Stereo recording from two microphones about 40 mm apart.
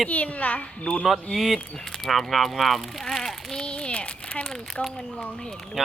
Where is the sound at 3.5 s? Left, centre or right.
Left.